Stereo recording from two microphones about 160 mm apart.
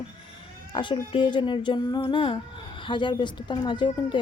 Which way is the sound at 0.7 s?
30° left (ahead or behind).